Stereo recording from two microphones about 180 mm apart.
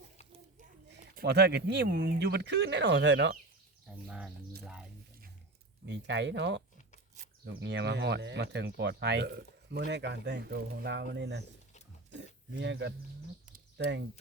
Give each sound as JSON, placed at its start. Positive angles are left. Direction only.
{"t": 0.9, "sound": "speech", "side_deg": -55}
{"t": 4.0, "sound": "speech", "side_deg": -5}
{"t": 4.6, "sound": "a sound", "side_deg": -5}
{"t": 5.9, "sound": "speech", "side_deg": -75}